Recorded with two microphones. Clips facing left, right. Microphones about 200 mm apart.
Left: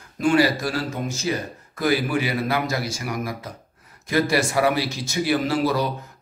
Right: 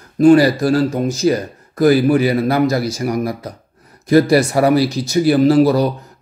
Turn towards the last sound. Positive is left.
turn(degrees=-35)  # may be behind; listen again after turning